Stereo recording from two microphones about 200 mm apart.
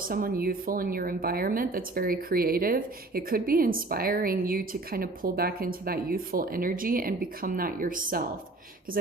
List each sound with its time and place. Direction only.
0.0 s a woman's voice: 45° right (ahead or behind)